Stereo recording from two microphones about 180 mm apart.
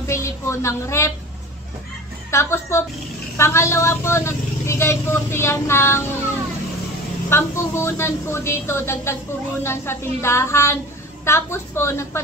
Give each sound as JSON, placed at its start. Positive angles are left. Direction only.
{"t": 0.0, "sound": "a sound", "side_deg": 15}
{"t": 2.3, "sound": "speech", "side_deg": 15}
{"t": 7.2, "sound": "speech", "side_deg": 15}